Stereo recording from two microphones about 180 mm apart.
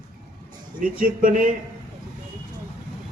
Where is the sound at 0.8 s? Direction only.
50° right (ahead or behind).